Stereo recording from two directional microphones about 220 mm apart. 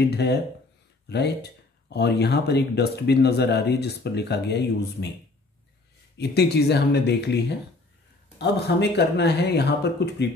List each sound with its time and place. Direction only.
0.1 s speech: 50° left (ahead or behind)
6.1 s speech: 50° left (ahead or behind)